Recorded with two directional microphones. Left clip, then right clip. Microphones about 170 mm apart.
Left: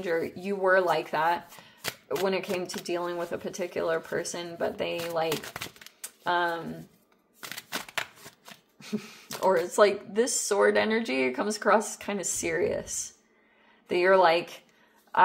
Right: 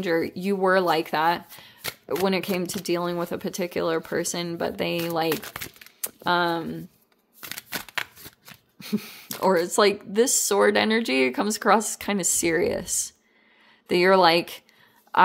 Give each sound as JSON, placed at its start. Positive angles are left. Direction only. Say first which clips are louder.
{"t": 0.0, "sound": "speech", "louder": "right 5 dB", "side_deg": -60}
{"t": 7.3, "sound": "shuffling cards", "louder": "right 2 dB", "side_deg": -25}
{"t": 8.7, "sound": "speech", "louder": "right 5 dB", "side_deg": -60}